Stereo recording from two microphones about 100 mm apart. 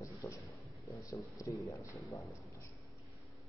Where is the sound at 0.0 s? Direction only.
30° left (ahead or behind).